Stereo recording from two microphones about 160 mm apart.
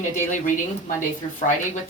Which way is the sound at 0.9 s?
55° left (ahead or behind).